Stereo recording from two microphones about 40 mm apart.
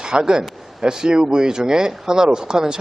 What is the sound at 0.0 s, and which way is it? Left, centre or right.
A man's voice, centre.